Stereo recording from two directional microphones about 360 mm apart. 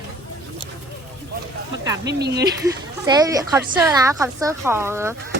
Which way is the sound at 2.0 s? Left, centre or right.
Right.